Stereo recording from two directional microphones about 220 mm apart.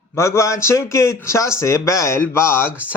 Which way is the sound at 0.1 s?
15° left (ahead or behind).